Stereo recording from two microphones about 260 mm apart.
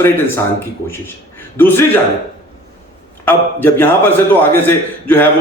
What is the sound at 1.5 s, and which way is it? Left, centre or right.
Speech, centre.